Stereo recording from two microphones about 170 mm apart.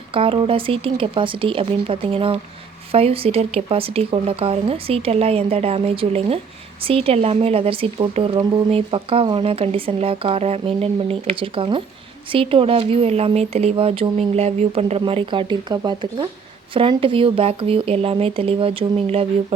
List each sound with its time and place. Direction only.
0.1 s a woman's voice: 30° right (ahead or behind)